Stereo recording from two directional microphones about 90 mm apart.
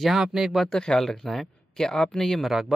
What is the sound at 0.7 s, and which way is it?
Speech, 10° left (ahead or behind).